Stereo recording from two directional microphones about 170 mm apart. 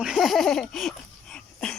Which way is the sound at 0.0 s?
Centre (ahead or behind).